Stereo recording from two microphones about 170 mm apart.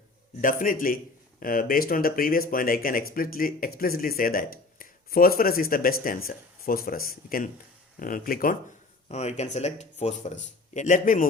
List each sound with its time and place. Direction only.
0.4 s speech: 55° left (ahead or behind)
9.0 s speech: 40° left (ahead or behind)